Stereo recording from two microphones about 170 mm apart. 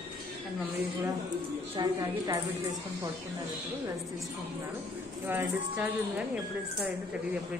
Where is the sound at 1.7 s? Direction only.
20° right (ahead or behind).